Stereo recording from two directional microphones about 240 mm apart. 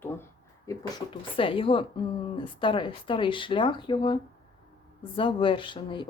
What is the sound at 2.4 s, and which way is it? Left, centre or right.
Speech, left.